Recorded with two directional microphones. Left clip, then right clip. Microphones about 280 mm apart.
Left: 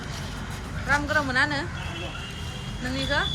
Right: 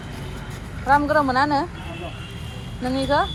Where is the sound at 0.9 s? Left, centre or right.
Centre.